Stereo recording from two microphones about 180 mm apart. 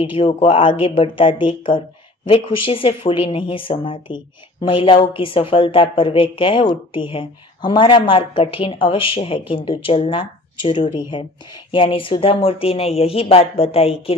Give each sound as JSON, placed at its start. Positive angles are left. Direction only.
{"t": 0.1, "sound": "a woman's voice", "side_deg": 30}